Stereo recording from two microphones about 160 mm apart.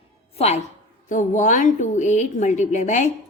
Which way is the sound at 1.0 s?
50° left (ahead or behind).